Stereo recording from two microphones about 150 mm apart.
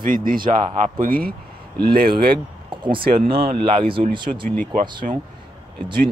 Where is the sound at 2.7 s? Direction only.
30° right (ahead or behind).